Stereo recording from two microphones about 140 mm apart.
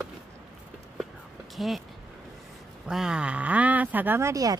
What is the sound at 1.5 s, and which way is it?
Speech, centre (ahead or behind).